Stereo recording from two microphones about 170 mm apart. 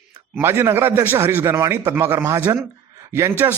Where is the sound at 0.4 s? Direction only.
15° right (ahead or behind).